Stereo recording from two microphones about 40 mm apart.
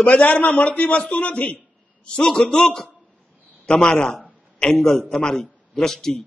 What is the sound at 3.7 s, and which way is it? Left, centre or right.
A man's voice, left.